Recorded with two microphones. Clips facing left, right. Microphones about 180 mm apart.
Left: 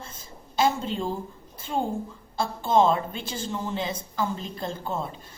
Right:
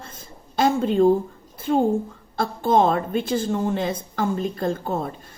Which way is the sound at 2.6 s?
55° right (ahead or behind).